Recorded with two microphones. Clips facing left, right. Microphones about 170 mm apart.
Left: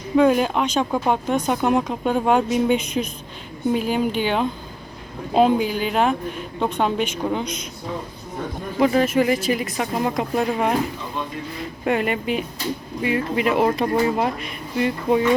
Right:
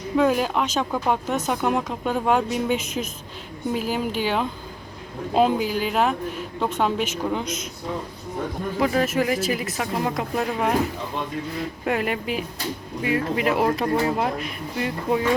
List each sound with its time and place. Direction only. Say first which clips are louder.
0.2 s speech: left 4 dB; centre (ahead or behind)
8.8 s speech: left 4 dB; centre (ahead or behind)
11.9 s speech: left 4 dB; centre (ahead or behind)